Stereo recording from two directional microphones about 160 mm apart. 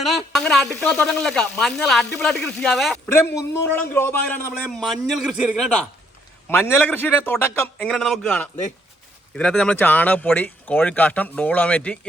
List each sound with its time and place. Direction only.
0.0 s speech: centre (ahead or behind)
3.1 s speech: 15° left (ahead or behind)
4.7 s speech: centre (ahead or behind)
6.7 s speech: 10° left (ahead or behind)